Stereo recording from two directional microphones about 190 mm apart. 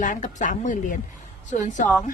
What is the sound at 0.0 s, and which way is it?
A woman's voice, 40° left (ahead or behind).